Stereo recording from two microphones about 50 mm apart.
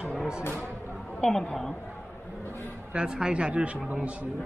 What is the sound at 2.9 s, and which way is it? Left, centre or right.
Speech, centre.